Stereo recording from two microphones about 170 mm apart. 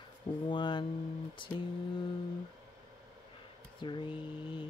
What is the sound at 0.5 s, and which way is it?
Mantra, 30° left (ahead or behind).